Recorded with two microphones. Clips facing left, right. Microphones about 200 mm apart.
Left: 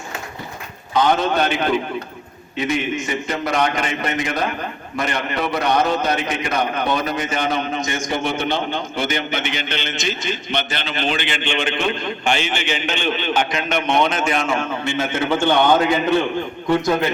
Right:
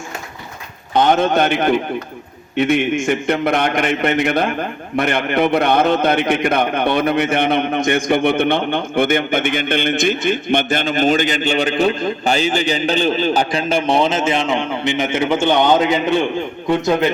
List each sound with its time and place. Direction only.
0.9 s a man's voice: 50° right (ahead or behind); by 17.1 s 20° right (ahead or behind)